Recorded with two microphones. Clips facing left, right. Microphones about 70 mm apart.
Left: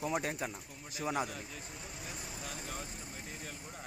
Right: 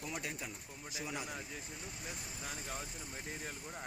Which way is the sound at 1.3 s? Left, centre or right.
Centre.